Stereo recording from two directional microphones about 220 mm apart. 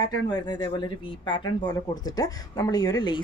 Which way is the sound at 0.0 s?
20° left (ahead or behind).